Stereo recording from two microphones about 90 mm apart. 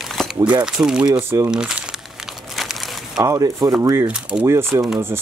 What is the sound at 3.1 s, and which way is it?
Speech, 40° right (ahead or behind).